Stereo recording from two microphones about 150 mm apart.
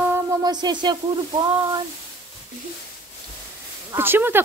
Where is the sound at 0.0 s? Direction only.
15° right (ahead or behind).